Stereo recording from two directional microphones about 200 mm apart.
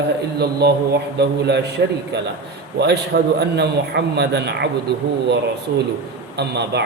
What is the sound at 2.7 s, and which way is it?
Speech, 55° right (ahead or behind).